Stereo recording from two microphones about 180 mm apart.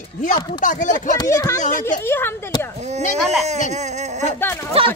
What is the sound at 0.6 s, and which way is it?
Speech, 45° left (ahead or behind).